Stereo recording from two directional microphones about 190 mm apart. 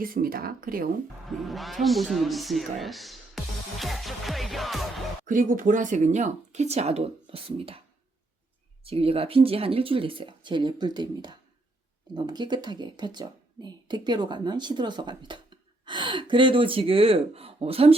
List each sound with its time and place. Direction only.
0.0 s speech: 50° right (ahead or behind)
1.3 s speech: centre (ahead or behind)
5.2 s speech: 45° right (ahead or behind)
8.8 s a woman's voice: 30° right (ahead or behind)